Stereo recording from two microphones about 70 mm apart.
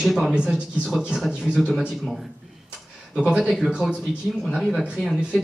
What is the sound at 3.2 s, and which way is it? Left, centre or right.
A man's voice, centre.